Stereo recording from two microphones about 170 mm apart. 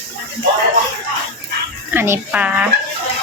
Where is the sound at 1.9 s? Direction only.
15° right (ahead or behind).